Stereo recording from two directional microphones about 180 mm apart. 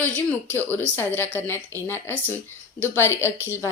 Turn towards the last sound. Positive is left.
turn(degrees=15)  # may be behind; listen again after turning